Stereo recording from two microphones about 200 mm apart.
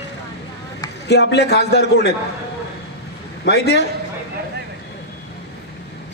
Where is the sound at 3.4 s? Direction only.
55° left (ahead or behind).